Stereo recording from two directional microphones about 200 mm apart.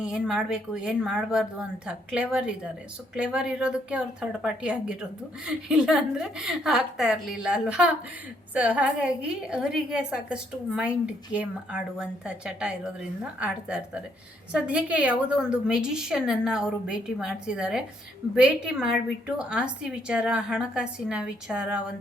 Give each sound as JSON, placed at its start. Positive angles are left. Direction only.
{"t": 0.0, "sound": "a woman's voice", "side_deg": -5}